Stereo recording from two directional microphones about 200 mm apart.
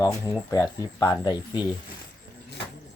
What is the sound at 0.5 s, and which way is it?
Speech, 20° left (ahead or behind).